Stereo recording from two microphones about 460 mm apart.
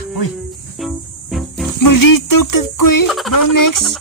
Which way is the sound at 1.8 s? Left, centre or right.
Left.